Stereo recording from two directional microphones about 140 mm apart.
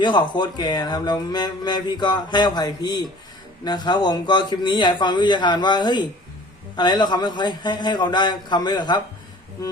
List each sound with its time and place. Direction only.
0.0 s speech: 35° left (ahead or behind)